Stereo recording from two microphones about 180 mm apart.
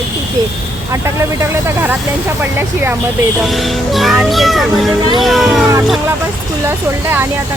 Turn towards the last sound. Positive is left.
turn(degrees=-15)  # may be behind; listen again after turning